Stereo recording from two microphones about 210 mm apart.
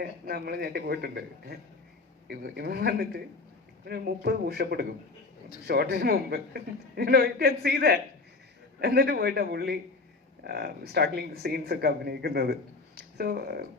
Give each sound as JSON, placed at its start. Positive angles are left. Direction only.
{"t": 0.0, "sound": "a man's voice", "side_deg": -50}